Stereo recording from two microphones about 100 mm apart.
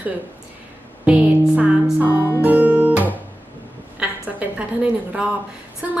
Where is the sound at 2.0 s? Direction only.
25° left (ahead or behind).